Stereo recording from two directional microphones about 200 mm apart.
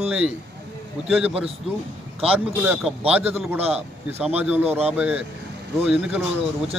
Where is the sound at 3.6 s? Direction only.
30° right (ahead or behind).